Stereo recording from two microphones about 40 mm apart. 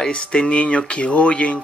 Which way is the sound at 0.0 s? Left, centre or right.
Left.